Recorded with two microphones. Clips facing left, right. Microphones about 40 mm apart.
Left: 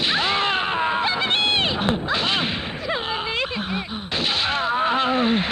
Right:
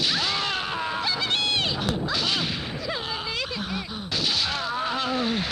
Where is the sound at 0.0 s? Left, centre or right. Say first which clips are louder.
Left 5 dB; left.